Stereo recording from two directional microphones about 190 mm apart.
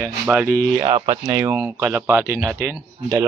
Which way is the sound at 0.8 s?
25° right (ahead or behind).